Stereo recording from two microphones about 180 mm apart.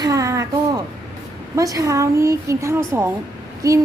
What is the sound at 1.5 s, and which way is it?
Speech, 20° right (ahead or behind).